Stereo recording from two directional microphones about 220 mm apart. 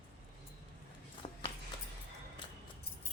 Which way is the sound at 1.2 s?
25° left (ahead or behind).